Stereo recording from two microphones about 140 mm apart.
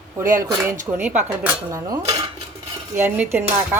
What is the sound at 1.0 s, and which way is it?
A woman's voice, 15° right (ahead or behind).